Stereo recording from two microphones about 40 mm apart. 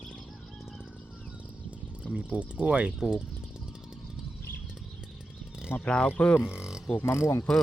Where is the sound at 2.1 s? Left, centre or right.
Right.